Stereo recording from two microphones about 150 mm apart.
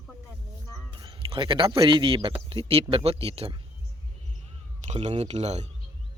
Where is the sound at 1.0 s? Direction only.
35° right (ahead or behind).